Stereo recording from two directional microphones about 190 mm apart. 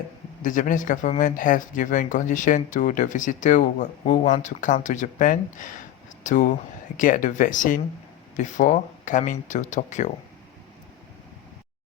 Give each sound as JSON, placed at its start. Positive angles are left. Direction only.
{"t": 0.4, "sound": "speech", "side_deg": 45}